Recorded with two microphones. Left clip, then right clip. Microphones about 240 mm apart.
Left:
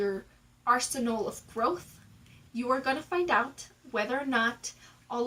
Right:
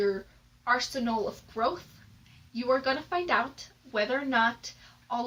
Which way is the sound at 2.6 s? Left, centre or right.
Centre.